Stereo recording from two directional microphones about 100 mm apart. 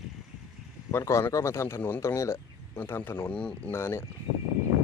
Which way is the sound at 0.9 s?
30° left (ahead or behind).